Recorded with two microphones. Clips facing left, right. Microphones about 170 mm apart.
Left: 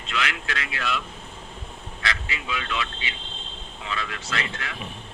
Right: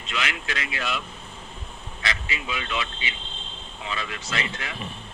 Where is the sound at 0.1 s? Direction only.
20° right (ahead or behind).